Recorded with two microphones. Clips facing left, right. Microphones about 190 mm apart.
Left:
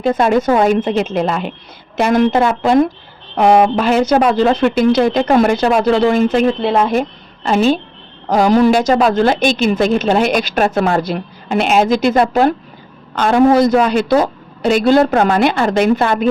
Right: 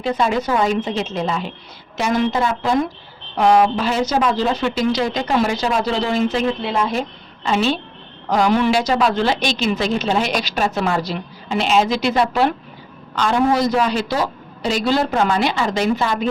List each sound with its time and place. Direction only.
0.0 s a woman's voice: 50° left (ahead or behind)